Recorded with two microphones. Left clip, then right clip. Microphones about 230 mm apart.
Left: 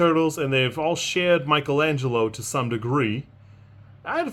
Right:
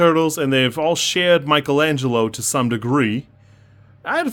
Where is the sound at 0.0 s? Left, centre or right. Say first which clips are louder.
Right 5 dB; right.